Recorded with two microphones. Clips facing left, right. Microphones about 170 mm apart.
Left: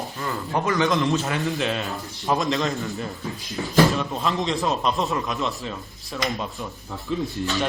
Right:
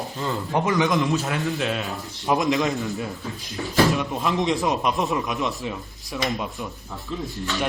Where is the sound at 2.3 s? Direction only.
20° right (ahead or behind).